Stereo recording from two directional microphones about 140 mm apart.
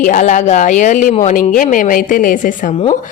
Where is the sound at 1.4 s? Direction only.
75° left (ahead or behind).